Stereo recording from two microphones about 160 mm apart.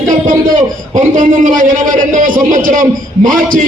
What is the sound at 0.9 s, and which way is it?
A man's voice, 55° right (ahead or behind).